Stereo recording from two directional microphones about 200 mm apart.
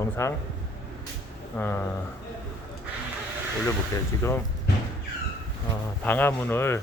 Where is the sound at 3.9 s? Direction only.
15° left (ahead or behind).